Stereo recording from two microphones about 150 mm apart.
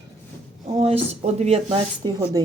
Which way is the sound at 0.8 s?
40° right (ahead or behind).